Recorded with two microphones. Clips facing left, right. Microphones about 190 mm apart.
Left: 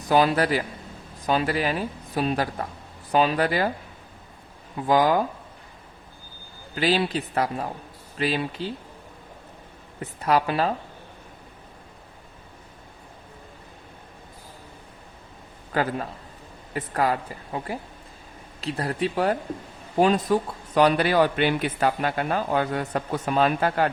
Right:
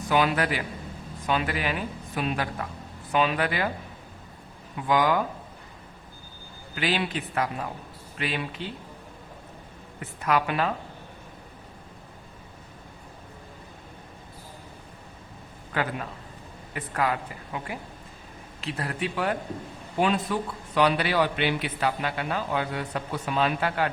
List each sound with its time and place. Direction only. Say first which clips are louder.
0.1 s a woman's voice: left 4 dB; 35° left (ahead or behind)
4.9 s a woman's voice: left 3 dB; 35° left (ahead or behind)
6.7 s a woman's voice: left 5 dB; 35° left (ahead or behind)
10.0 s a woman's voice: left 3 dB; 35° left (ahead or behind)
15.7 s a woman's voice: left 4 dB; 35° left (ahead or behind)